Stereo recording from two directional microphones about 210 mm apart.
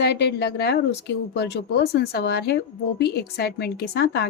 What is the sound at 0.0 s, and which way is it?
Speech, 50° left (ahead or behind).